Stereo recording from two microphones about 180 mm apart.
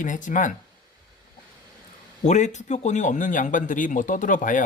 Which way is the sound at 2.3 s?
40° left (ahead or behind).